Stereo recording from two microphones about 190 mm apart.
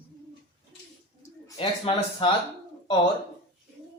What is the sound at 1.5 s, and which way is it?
Speech, 30° left (ahead or behind).